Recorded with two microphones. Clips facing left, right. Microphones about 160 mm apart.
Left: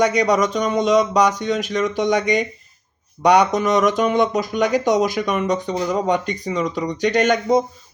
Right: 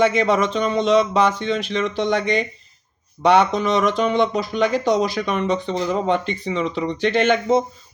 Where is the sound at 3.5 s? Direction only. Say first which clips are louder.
Left 2 dB; 45° left (ahead or behind).